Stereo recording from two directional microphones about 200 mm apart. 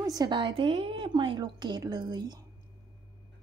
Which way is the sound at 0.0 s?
20° right (ahead or behind).